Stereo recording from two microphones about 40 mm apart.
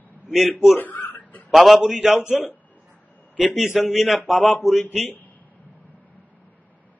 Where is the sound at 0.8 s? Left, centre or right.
Left.